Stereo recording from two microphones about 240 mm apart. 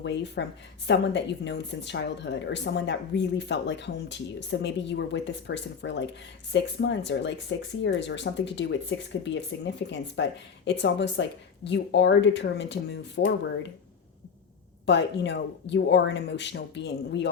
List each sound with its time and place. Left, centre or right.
0.0 s speech: left
14.8 s speech: left